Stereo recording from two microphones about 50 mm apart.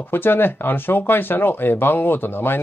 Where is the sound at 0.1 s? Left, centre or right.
Left.